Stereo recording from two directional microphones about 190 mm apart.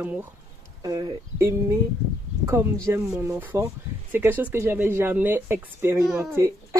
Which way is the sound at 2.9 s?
10° right (ahead or behind).